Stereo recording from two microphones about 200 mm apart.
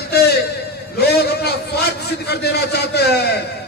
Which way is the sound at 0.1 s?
50° left (ahead or behind).